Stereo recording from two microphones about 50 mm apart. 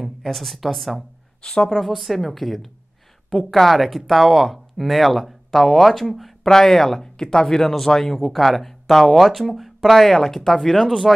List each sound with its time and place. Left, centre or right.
0.0 s speech: centre
1.4 s a woman's voice: centre
1.8 s speech: centre